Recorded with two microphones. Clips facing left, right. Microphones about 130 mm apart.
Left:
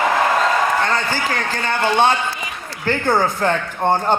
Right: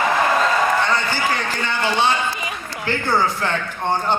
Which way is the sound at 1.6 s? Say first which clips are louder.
Left 5 dB; 50° left (ahead or behind).